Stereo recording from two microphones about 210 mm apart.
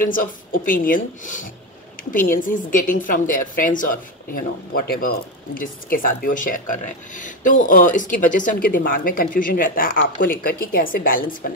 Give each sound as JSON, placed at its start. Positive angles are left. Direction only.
{"t": 0.1, "sound": "a woman's voice", "side_deg": 40}